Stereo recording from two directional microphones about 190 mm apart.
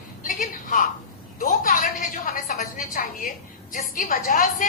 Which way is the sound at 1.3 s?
45° left (ahead or behind).